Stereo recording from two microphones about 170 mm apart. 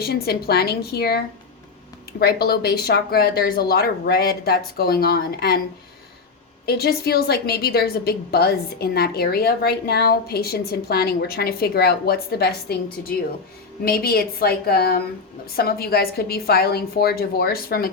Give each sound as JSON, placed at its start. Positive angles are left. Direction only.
{"t": 0.0, "sound": "a woman's voice", "side_deg": 65}
{"t": 6.7, "sound": "a woman's voice", "side_deg": 70}